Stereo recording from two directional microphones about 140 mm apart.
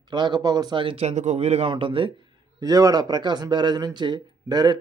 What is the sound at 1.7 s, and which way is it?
Speech, 40° right (ahead or behind).